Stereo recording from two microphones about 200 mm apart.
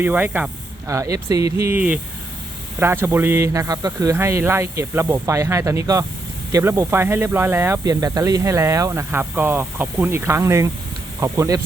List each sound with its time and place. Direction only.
0.0 s speech: 10° right (ahead or behind)